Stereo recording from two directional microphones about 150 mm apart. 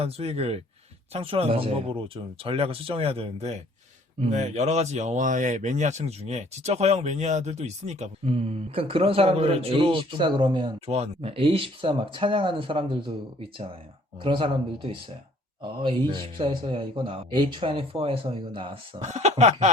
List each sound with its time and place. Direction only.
0.0 s a man's voice: 45° right (ahead or behind)
14.2 s a man's voice: 35° right (ahead or behind)
19.0 s speech: 50° right (ahead or behind)